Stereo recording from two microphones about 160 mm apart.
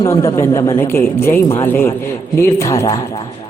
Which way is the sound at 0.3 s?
20° left (ahead or behind).